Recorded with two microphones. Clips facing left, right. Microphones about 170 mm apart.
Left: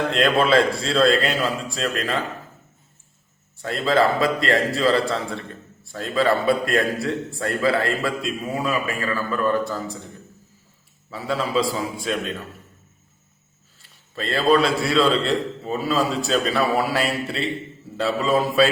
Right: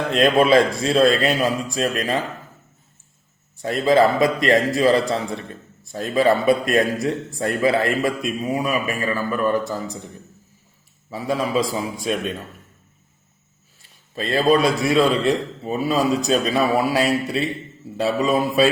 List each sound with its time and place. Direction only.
0.1 s a man's voice: 20° right (ahead or behind)
3.6 s a man's voice: 15° right (ahead or behind)
11.1 s a man's voice: 15° right (ahead or behind)
14.2 s a man's voice: 15° right (ahead or behind)